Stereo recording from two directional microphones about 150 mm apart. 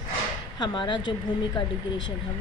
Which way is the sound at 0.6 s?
30° left (ahead or behind).